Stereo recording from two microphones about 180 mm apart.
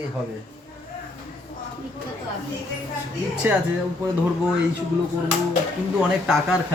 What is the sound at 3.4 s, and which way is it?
Speech, 10° right (ahead or behind).